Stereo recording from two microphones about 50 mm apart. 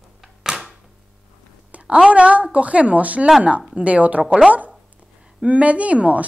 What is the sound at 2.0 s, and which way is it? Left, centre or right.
A woman's voice, right.